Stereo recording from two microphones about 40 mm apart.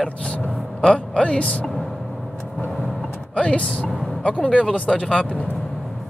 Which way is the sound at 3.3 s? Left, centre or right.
Left.